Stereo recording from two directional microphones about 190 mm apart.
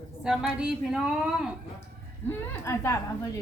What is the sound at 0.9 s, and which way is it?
Speech, centre (ahead or behind).